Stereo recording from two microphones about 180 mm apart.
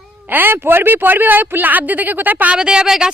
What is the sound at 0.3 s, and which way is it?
A man's voice, 10° right (ahead or behind).